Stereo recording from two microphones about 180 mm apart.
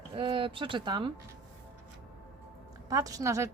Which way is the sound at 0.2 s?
30° right (ahead or behind).